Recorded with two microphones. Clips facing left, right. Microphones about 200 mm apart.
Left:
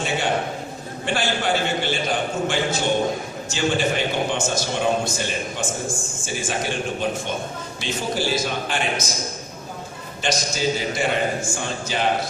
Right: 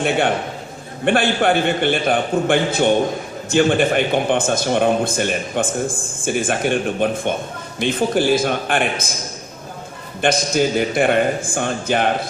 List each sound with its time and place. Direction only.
1.0 s a man's voice: 60° right (ahead or behind)
10.2 s a man's voice: 55° right (ahead or behind)